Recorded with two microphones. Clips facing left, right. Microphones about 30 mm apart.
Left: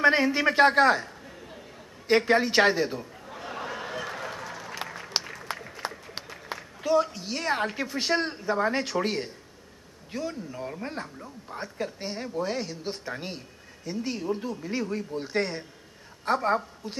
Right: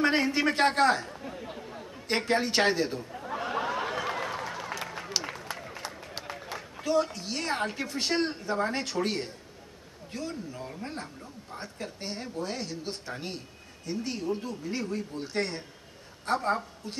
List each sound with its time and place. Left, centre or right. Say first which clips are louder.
0.0 s a man's voice: left 4 dB; centre
2.0 s a man's voice: left 5 dB; centre
3.4 s a sound: right 3 dB; right
5.1 s a sound: left 1 dB; left
5.8 s run: left 8 dB; left
6.3 s a woman's voice: left 1 dB; centre